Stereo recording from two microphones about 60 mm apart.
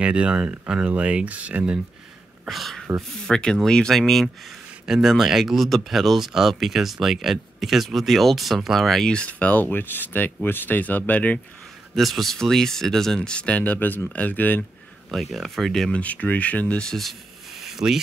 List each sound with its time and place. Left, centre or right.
0.0 s speech: centre
2.4 s speech: centre
3.3 s speech: centre
4.8 s speech: centre
9.1 s speech: left
11.9 s speech: centre; by 14.6 s left
15.0 s speech: centre
15.9 s speech: left
16.8 s speech: centre